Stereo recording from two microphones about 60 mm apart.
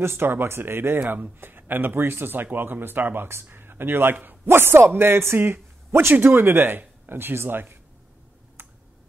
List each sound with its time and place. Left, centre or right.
0.0 s a man's voice: right